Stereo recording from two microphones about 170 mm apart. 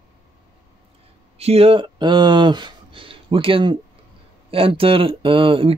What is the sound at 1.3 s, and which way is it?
Speech, 35° right (ahead or behind).